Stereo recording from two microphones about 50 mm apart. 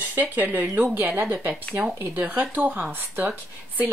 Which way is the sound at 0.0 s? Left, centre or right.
Right.